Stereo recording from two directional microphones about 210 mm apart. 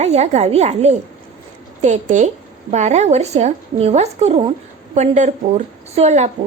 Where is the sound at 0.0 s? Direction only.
30° right (ahead or behind).